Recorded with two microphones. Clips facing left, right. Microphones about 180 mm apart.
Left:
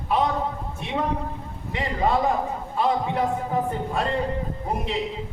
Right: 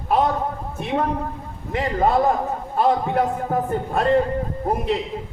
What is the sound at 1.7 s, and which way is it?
A man's voice, 50° right (ahead or behind).